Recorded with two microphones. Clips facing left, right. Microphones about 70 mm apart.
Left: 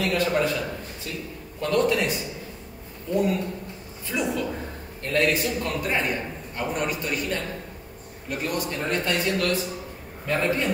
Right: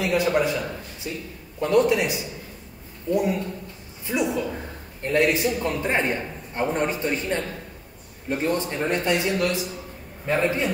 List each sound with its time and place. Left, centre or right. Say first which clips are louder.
0.0 s a man's voice: right 2 dB; centre